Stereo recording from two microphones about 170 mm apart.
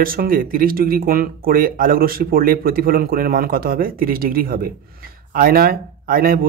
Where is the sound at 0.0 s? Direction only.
60° right (ahead or behind).